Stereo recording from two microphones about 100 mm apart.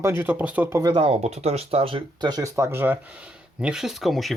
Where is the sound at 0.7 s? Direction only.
35° right (ahead or behind).